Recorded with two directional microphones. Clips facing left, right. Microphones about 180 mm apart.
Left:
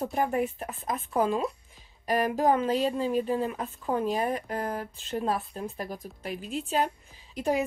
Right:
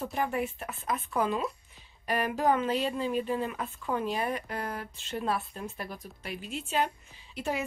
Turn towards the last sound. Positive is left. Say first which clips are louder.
# left 6 dB
turn(degrees=35)  # may be behind; listen again after turning